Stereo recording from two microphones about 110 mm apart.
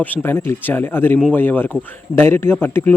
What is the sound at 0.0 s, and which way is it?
Speech, 15° left (ahead or behind).